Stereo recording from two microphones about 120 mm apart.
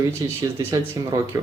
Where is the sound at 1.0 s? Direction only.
35° right (ahead or behind).